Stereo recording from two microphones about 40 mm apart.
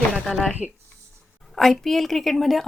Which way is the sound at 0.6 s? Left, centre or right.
Centre.